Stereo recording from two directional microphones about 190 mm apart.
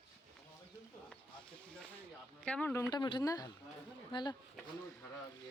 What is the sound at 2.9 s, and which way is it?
Speech, 20° left (ahead or behind).